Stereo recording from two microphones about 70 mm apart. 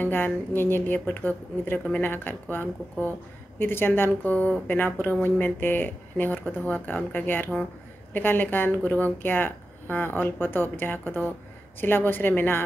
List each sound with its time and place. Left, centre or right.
0.0 s speech: left